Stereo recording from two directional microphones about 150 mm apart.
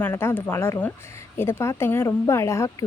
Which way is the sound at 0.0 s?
15° left (ahead or behind).